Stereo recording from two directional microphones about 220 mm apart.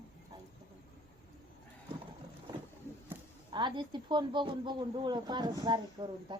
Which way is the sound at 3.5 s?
20° right (ahead or behind).